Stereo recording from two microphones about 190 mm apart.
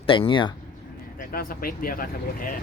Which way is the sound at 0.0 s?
25° left (ahead or behind).